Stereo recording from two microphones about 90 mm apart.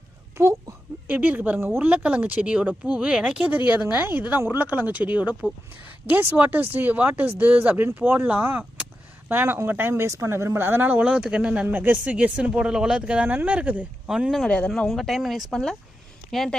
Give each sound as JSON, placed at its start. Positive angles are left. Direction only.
{"t": 1.0, "sound": "speech", "side_deg": -20}
{"t": 14.1, "sound": "speech", "side_deg": -5}
{"t": 14.4, "sound": "speech", "side_deg": 10}
{"t": 14.8, "sound": "speech", "side_deg": 0}